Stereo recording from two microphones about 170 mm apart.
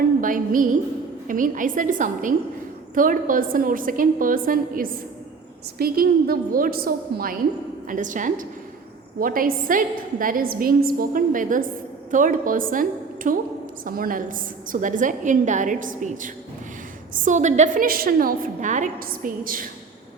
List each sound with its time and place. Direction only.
0.2 s music: 50° right (ahead or behind)
1.3 s a woman's voice: 50° right (ahead or behind)
7.9 s a woman's voice: 50° right (ahead or behind)